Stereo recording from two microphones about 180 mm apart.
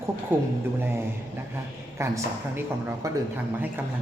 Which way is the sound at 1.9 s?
15° right (ahead or behind).